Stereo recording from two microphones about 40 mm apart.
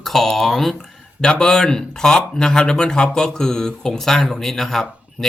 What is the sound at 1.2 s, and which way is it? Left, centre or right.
Speech, centre.